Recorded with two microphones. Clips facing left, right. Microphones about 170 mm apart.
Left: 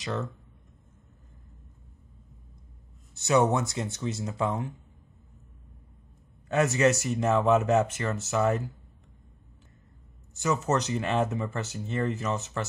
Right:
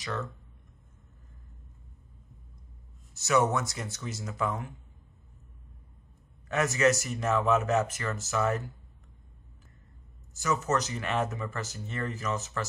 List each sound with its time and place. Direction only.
0.0 s speech: 25° left (ahead or behind)
3.2 s speech: 30° left (ahead or behind)
6.5 s speech: 30° left (ahead or behind)
10.4 s speech: 30° left (ahead or behind)